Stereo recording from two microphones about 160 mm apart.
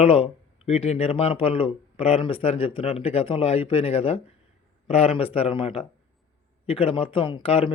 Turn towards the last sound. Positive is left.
turn(degrees=35)  # may be behind; listen again after turning